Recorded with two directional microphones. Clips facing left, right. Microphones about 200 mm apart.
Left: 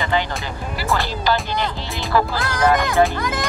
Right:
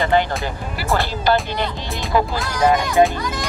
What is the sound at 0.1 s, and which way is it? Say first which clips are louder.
Music: right 4 dB; 50° right (ahead or behind).